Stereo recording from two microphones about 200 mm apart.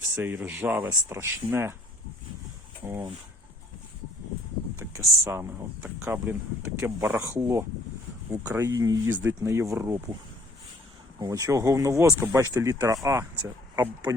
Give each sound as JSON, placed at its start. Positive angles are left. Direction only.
{"t": 0.2, "sound": "speech", "side_deg": -10}
{"t": 2.8, "sound": "speech", "side_deg": -15}
{"t": 4.9, "sound": "speech", "side_deg": -15}
{"t": 11.2, "sound": "speech", "side_deg": -15}